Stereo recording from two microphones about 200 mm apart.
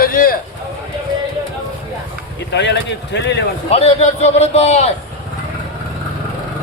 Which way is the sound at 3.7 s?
30° left (ahead or behind).